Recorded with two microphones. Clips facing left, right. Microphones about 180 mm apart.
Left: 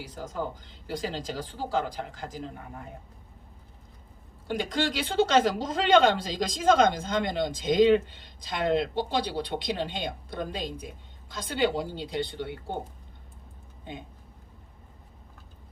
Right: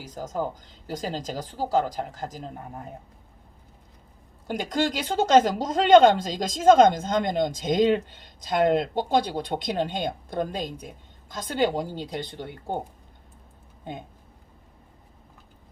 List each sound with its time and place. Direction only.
0.0 s speech: 45° right (ahead or behind)
4.4 s speech: 45° right (ahead or behind)